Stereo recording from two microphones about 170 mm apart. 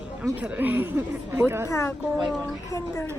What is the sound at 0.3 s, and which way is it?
A woman's voice, 10° right (ahead or behind).